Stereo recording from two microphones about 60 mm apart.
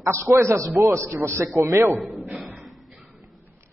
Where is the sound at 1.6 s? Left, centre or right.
Right.